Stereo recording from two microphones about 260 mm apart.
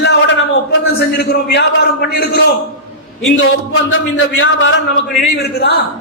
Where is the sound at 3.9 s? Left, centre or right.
Left.